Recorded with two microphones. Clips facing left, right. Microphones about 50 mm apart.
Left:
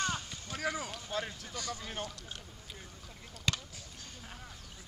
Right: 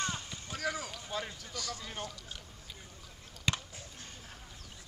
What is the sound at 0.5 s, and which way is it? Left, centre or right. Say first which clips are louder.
Run: left 1 dB; centre.